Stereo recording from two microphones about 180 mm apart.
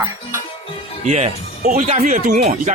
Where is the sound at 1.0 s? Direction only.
40° right (ahead or behind).